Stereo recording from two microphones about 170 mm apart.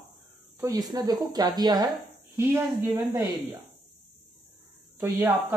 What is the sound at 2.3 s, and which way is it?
A woman's voice, 15° right (ahead or behind).